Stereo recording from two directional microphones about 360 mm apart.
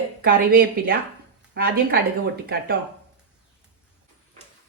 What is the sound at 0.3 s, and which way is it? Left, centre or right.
Speech, right.